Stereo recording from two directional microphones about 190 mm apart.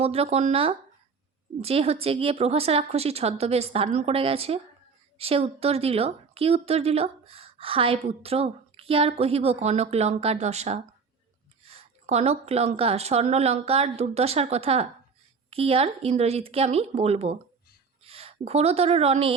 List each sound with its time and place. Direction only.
0.0 s a woman's voice: 30° right (ahead or behind)